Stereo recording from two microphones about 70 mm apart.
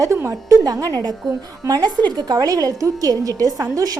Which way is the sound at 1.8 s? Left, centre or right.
Right.